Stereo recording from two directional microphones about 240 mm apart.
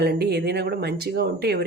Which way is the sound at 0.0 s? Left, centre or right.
Right.